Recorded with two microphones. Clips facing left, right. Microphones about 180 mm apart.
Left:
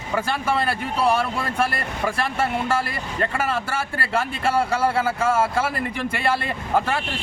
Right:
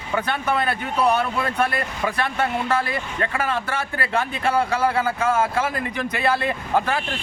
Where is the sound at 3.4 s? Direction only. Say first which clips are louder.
Even; 5° left (ahead or behind).